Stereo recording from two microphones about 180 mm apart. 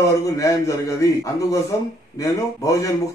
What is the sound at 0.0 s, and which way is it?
A man's voice, 15° left (ahead or behind).